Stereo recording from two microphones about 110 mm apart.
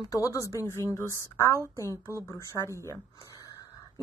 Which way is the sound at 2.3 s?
25° left (ahead or behind).